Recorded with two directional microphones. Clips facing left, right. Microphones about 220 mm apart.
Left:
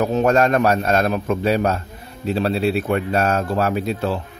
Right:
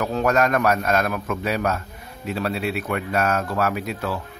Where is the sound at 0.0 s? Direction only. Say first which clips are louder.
Left 4 dB; 25° left (ahead or behind).